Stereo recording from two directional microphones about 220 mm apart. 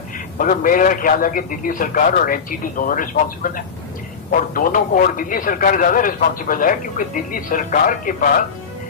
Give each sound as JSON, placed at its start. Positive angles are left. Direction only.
{"t": 0.3, "sound": "speech", "side_deg": 40}